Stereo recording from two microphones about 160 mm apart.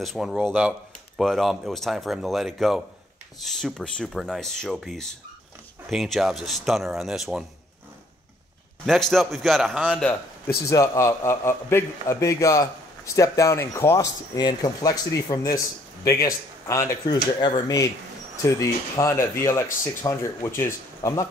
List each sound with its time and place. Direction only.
0.0 s speech: centre (ahead or behind)
8.8 s speech: centre (ahead or behind)
10.7 s a man's voice: 20° left (ahead or behind)